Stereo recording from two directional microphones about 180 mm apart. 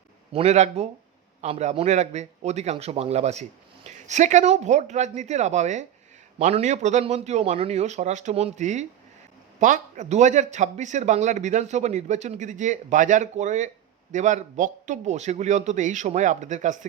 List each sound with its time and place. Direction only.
0.3 s a man's voice: 40° right (ahead or behind)